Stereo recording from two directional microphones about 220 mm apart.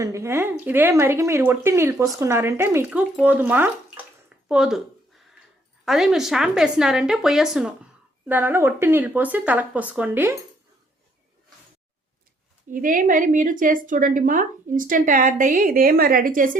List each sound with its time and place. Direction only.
0.0 s speech: 15° right (ahead or behind)
5.8 s a woman's voice: centre (ahead or behind)
12.7 s a woman's voice: 40° right (ahead or behind)